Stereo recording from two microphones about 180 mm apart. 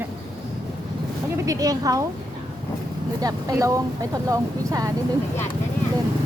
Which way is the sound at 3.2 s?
20° right (ahead or behind).